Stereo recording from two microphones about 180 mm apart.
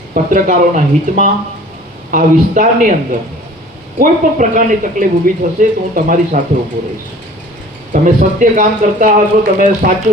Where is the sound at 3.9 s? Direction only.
45° right (ahead or behind).